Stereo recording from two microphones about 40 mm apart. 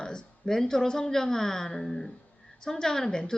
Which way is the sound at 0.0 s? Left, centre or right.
Centre.